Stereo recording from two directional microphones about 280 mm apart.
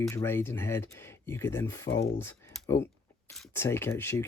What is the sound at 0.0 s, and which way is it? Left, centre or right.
Speech, centre.